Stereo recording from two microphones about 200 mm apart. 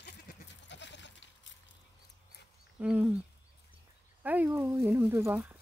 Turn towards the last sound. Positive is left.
turn(degrees=-10)  # may be behind; listen again after turning